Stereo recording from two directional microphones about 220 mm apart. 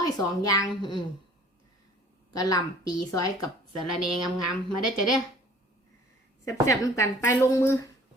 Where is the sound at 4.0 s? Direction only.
Centre (ahead or behind).